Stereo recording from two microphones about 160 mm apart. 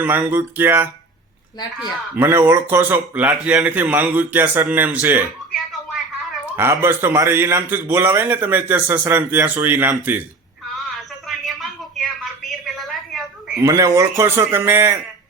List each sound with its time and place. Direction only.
0.0 s a man's voice: 10° right (ahead or behind)
2.1 s a man's voice: 15° right (ahead or behind)
6.6 s a man's voice: 15° right (ahead or behind)
10.9 s a sound: centre (ahead or behind)
13.6 s a man's voice: 20° right (ahead or behind)